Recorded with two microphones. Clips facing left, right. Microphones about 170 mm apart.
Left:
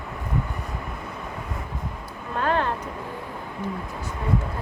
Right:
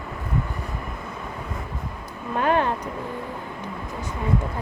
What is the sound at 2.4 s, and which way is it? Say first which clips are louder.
Speech: right 3 dB; 15° right (ahead or behind).